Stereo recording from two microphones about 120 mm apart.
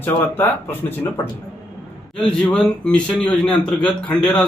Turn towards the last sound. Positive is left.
turn(degrees=5)  # may be behind; listen again after turning